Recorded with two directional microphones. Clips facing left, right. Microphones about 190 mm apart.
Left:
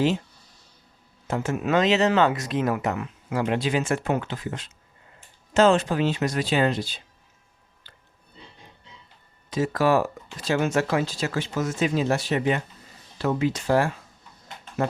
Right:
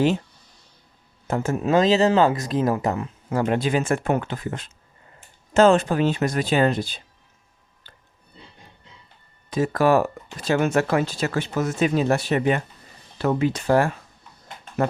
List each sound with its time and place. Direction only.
1.3 s speech: 40° right (ahead or behind)
3.3 s speech: 45° right (ahead or behind)
9.5 s speech: 55° right (ahead or behind)